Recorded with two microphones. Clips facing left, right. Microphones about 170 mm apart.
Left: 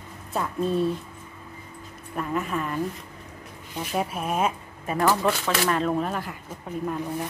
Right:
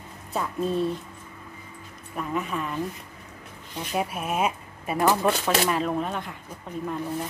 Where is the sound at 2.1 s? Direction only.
Centre (ahead or behind).